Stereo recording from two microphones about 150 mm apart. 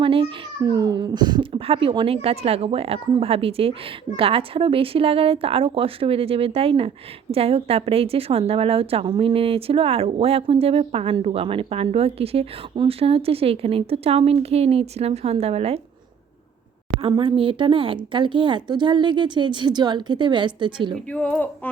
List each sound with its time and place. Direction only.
0.0 s cat: 35° right (ahead or behind)
0.6 s a woman's voice: 25° right (ahead or behind); by 15.8 s 45° right (ahead or behind)
17.1 s a woman's voice: 35° right (ahead or behind)
21.1 s speech: 10° left (ahead or behind)